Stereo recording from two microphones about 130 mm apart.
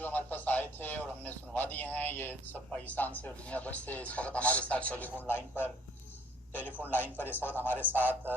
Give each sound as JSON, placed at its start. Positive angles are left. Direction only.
{"t": 0.0, "sound": "a man's voice", "side_deg": 15}
{"t": 7.8, "sound": "a man's voice", "side_deg": -15}